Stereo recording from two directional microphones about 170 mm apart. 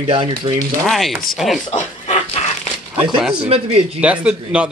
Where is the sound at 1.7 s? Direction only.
45° left (ahead or behind).